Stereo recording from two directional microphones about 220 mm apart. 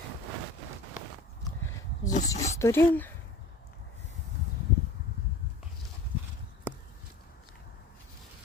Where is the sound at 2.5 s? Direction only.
15° left (ahead or behind).